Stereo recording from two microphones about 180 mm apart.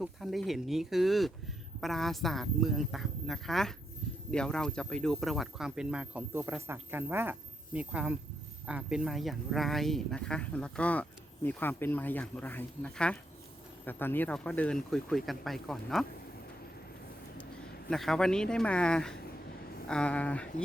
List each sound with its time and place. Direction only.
0.0 s speech: centre (ahead or behind)
17.8 s speech: centre (ahead or behind)